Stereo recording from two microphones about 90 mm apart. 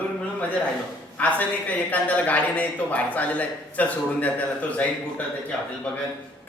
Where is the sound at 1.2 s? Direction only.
20° left (ahead or behind).